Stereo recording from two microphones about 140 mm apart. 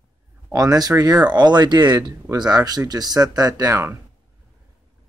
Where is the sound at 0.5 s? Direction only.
25° right (ahead or behind).